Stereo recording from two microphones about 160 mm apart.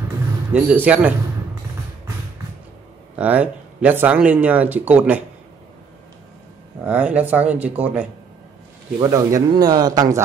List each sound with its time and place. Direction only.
0.5 s speech: 10° right (ahead or behind)
3.2 s speech: 10° right (ahead or behind)
6.9 s speech: 10° right (ahead or behind)
9.0 s speech: 20° right (ahead or behind)